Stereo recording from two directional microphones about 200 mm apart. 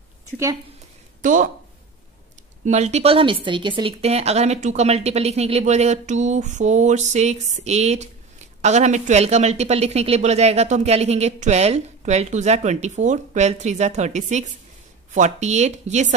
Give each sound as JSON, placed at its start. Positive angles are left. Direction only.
{"t": 1.2, "sound": "speech", "side_deg": -40}
{"t": 2.6, "sound": "a woman's voice", "side_deg": -35}